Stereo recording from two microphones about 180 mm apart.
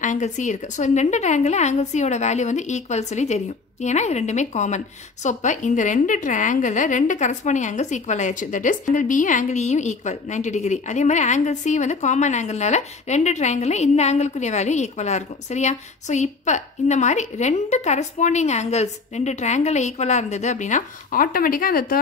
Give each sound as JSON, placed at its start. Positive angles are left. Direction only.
{"t": 0.0, "sound": "a woman's voice", "side_deg": 45}